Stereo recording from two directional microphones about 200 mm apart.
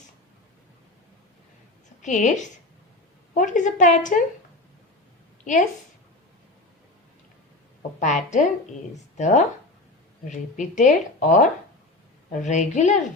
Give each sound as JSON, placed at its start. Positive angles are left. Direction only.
{"t": 2.0, "sound": "speech", "side_deg": 35}
{"t": 7.8, "sound": "speech", "side_deg": 40}